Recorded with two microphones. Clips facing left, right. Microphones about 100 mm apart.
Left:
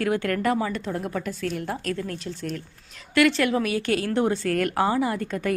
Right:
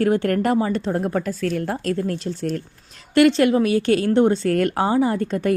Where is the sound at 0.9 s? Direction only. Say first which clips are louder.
Right 6 dB; 45° right (ahead or behind).